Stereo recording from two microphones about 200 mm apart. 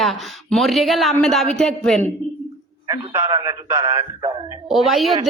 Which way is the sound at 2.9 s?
20° right (ahead or behind).